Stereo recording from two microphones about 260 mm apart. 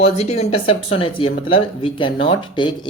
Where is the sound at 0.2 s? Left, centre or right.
Left.